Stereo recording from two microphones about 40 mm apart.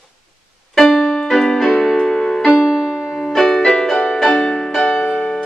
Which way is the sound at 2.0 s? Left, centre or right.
Centre.